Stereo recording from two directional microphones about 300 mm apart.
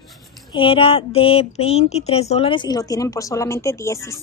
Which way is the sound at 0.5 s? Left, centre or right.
Centre.